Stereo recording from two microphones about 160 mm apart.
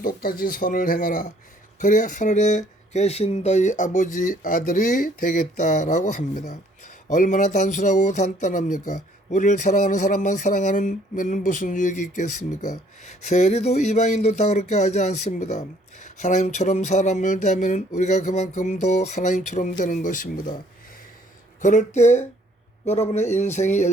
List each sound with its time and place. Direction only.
0.0 s speech: 65° left (ahead or behind)
21.6 s speech: 50° left (ahead or behind)